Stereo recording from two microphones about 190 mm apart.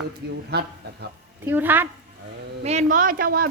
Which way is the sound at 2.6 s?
40° right (ahead or behind).